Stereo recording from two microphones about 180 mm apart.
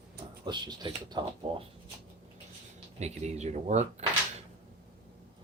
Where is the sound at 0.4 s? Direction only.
25° right (ahead or behind).